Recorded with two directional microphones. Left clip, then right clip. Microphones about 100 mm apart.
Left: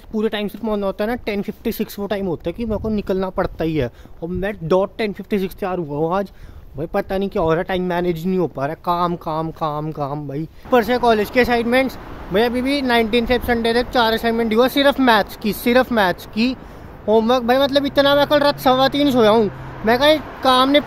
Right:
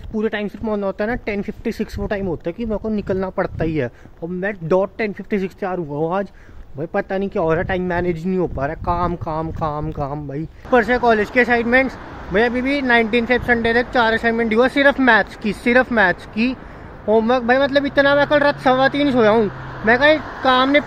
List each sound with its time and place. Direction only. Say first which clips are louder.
0.1 s speech: left 1 dB; 30° left (ahead or behind)
6.8 s speech: even; 25° left (ahead or behind)
10.7 s speech: even; 15° left (ahead or behind)